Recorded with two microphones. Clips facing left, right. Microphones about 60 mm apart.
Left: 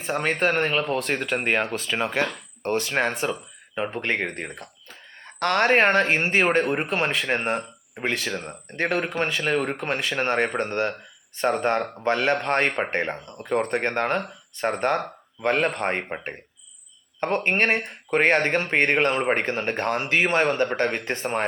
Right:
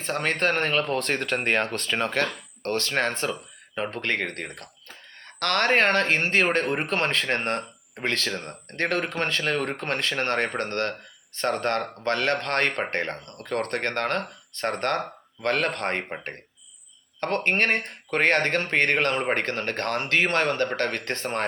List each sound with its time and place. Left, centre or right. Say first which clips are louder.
0.0 s speech: left 2 dB; centre